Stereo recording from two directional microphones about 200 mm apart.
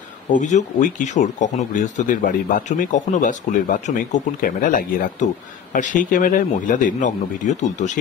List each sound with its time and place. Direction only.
0.3 s speech: 35° left (ahead or behind)